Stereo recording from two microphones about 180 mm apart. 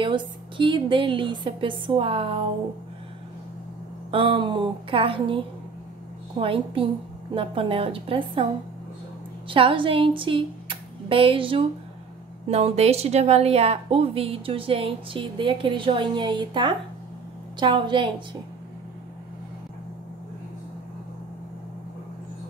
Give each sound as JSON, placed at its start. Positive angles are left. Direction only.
{"t": 0.0, "sound": "a woman's voice", "side_deg": -25}
{"t": 4.1, "sound": "a woman's voice", "side_deg": -30}
{"t": 9.5, "sound": "a woman's voice", "side_deg": -30}